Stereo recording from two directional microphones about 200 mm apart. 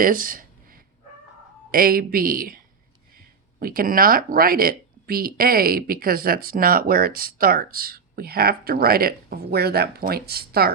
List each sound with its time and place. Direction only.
0.0 s speech: 45° right (ahead or behind)
1.7 s speech: 45° right (ahead or behind)
3.6 s speech: 45° right (ahead or behind)